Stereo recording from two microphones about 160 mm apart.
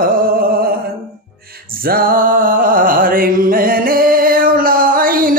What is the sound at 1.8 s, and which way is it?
Music, 65° right (ahead or behind).